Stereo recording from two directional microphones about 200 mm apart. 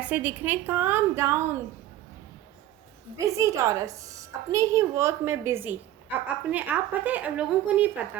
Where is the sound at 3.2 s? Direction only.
15° right (ahead or behind).